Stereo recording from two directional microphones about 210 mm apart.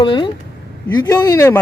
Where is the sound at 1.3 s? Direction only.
10° left (ahead or behind).